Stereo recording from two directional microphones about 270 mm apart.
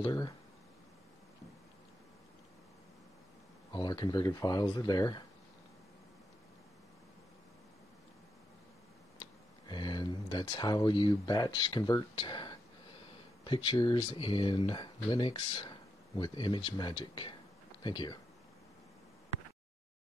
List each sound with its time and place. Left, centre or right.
0.0 s speech: centre
3.7 s speech: centre
9.2 s speech: centre